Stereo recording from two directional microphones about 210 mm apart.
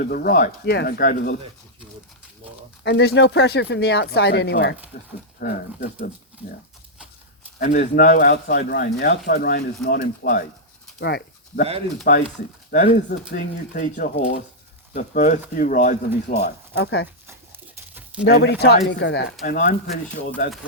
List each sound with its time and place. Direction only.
0.0 s speech: 45° left (ahead or behind)
2.8 s speech: 50° left (ahead or behind)
7.6 s speech: 40° left (ahead or behind)
11.0 s a sound: 50° left (ahead or behind)
12.1 s speech: 45° left (ahead or behind)
17.2 s tearing: 10° right (ahead or behind)
18.3 s speech: 50° left (ahead or behind)